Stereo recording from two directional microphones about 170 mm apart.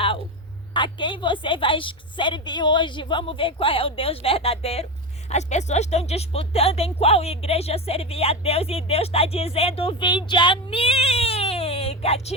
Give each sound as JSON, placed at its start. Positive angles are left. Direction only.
{"t": 0.7, "sound": "a woman's voice", "side_deg": 30}